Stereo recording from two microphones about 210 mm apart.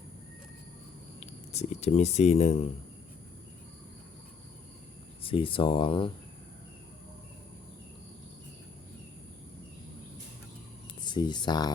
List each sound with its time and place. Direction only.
1.2 s speech: 30° left (ahead or behind)
5.2 s speech: 25° left (ahead or behind)
11.0 s speech: 20° left (ahead or behind)